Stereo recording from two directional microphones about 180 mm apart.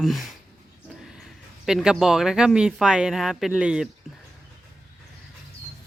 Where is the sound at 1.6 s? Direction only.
5° right (ahead or behind).